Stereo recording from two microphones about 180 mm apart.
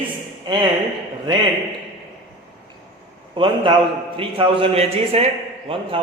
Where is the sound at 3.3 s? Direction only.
30° right (ahead or behind).